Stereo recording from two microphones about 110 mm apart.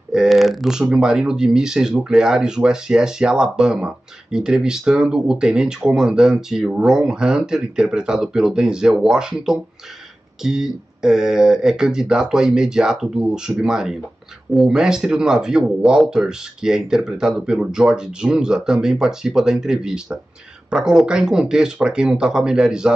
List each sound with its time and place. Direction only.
0.1 s speech: 5° right (ahead or behind)